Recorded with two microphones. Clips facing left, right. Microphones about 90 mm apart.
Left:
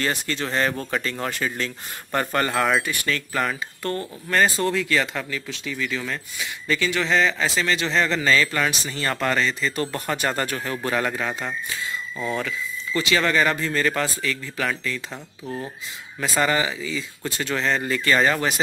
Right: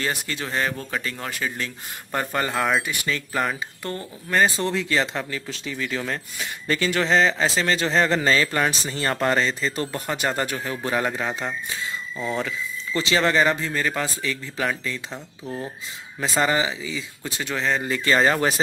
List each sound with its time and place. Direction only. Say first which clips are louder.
0.0 s speech: left 2 dB; 10° right (ahead or behind)
2.8 s speech: left 1 dB; 15° right (ahead or behind)
9.9 s speech: even; 15° right (ahead or behind)
14.2 s speech: even; 20° right (ahead or behind)
15.4 s speech: even; 5° right (ahead or behind)
16.2 s speech: even; 20° right (ahead or behind)
18.1 s speech: right 1 dB; 35° right (ahead or behind)